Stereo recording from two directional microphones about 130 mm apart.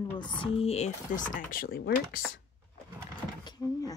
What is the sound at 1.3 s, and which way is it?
Speech, 90° left.